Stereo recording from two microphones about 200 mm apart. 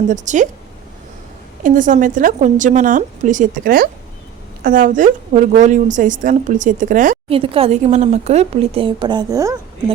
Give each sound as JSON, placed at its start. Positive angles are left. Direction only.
{"t": 0.1, "sound": "a woman's voice", "side_deg": -40}
{"t": 1.6, "sound": "a woman's voice", "side_deg": -40}
{"t": 7.3, "sound": "speech", "side_deg": -30}